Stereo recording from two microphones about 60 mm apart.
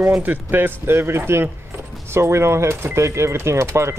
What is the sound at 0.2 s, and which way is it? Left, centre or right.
Speech, right.